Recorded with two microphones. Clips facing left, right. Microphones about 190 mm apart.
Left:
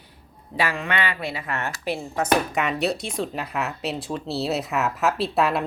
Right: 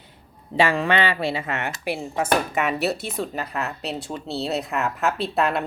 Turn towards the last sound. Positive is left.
turn(degrees=0)  # may be behind; listen again after turning